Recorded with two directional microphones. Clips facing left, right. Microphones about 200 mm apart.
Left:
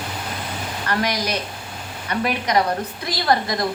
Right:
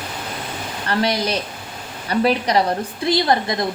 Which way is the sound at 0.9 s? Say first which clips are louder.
Right 3 dB; 30° right (ahead or behind).